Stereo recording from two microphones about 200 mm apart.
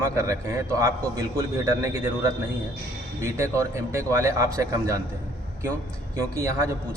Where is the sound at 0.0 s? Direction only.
15° right (ahead or behind).